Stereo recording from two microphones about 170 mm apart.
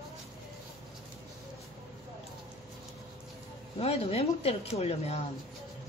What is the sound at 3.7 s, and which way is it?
Speech, 35° left (ahead or behind).